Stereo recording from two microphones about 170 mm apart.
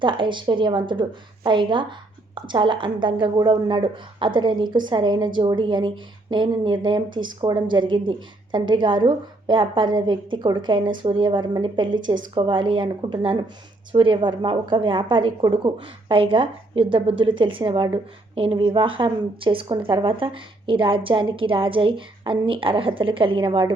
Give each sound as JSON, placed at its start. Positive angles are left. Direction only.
{"t": 0.0, "sound": "a woman's voice", "side_deg": -30}